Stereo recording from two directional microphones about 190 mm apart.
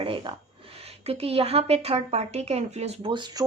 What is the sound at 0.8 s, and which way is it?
A woman's voice, 30° right (ahead or behind).